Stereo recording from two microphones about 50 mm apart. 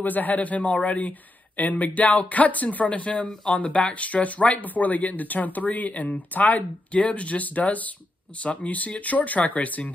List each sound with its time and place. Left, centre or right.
0.0 s speech: left